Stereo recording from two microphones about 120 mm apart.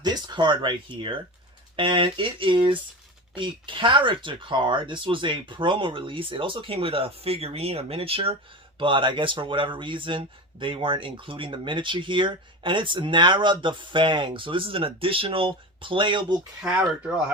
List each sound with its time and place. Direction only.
0.0 s speech: 40° right (ahead or behind)